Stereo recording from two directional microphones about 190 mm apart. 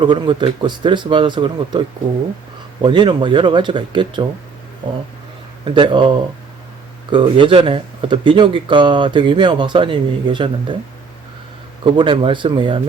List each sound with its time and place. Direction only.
0.0 s speech: 25° right (ahead or behind)
2.8 s speech: 25° right (ahead or behind)
5.6 s speech: 25° right (ahead or behind)
7.1 s speech: 25° right (ahead or behind)
11.8 s speech: 25° right (ahead or behind)